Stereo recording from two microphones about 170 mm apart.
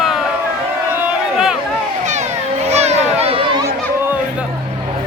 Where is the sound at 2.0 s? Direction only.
45° right (ahead or behind).